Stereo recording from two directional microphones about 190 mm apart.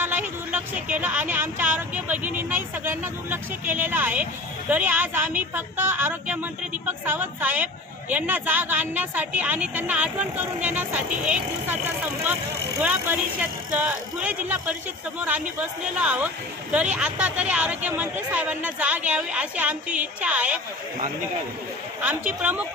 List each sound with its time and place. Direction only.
0.0 s speech: 10° right (ahead or behind)
12.8 s speech: 10° right (ahead or behind)
22.0 s speech: 5° right (ahead or behind)